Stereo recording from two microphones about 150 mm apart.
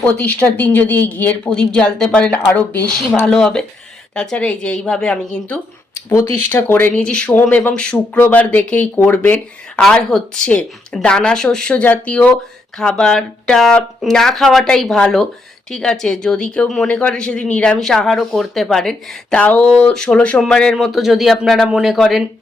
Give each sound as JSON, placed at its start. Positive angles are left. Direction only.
{"t": 0.0, "sound": "speech", "side_deg": 10}
{"t": 6.1, "sound": "speech", "side_deg": 20}